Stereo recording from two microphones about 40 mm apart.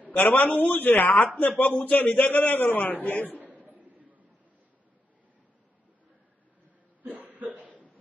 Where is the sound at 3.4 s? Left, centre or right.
Right.